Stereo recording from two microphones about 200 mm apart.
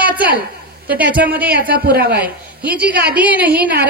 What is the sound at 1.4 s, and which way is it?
Speech, 45° right (ahead or behind).